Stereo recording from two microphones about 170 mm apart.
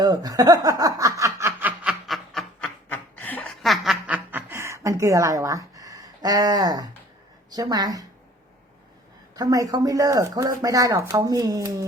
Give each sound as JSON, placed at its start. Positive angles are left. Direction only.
{"t": 0.0, "sound": "snicker", "side_deg": -25}
{"t": 7.5, "sound": "speech", "side_deg": -20}
{"t": 9.3, "sound": "speech", "side_deg": -20}